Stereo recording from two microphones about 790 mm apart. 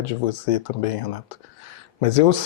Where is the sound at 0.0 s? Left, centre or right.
Left.